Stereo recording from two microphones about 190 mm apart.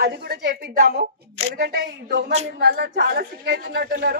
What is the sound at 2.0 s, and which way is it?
Speech, 70° right (ahead or behind).